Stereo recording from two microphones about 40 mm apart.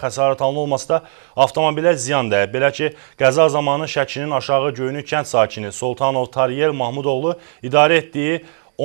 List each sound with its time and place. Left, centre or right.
0.0 s speech: centre